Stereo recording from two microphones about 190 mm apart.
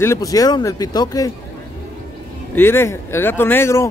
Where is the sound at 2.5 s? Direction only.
10° left (ahead or behind).